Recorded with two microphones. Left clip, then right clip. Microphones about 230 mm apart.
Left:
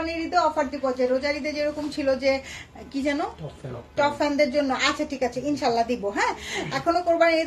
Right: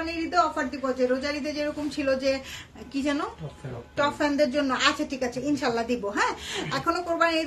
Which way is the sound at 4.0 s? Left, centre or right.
Centre.